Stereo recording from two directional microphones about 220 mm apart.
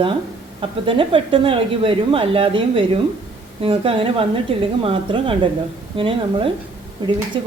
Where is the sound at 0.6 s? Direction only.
25° right (ahead or behind).